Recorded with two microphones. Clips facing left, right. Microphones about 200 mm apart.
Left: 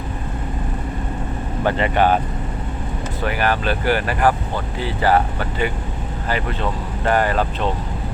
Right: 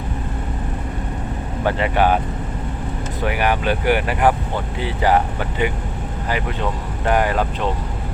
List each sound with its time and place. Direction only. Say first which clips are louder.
1.6 s speech: even; 10° right (ahead or behind)
3.2 s speech: right 1 dB; 15° right (ahead or behind)